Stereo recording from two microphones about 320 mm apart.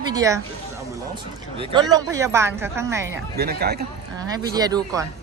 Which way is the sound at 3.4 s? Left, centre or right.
Right.